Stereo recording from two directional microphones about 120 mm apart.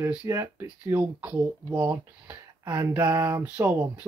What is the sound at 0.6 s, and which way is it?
Speech, 10° right (ahead or behind).